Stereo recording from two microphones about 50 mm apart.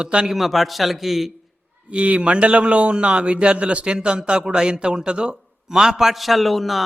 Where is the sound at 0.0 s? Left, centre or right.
Centre.